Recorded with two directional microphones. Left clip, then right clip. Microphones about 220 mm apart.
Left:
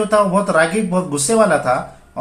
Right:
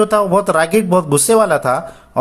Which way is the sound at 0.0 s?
50° right (ahead or behind).